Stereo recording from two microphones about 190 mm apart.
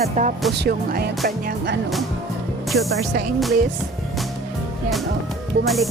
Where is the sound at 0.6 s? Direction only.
55° right (ahead or behind).